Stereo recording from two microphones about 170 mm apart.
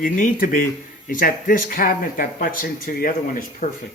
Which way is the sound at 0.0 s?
55° left (ahead or behind).